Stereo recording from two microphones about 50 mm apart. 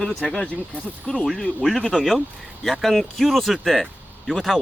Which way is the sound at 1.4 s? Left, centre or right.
Centre.